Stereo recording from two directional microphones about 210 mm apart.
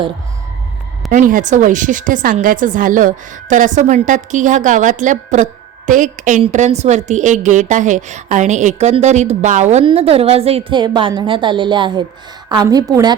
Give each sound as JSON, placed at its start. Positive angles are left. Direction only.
{"t": 1.1, "sound": "a woman's voice", "side_deg": -40}